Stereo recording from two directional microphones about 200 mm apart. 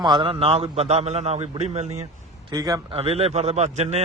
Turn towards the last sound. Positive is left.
turn(degrees=-35)  # may be behind; listen again after turning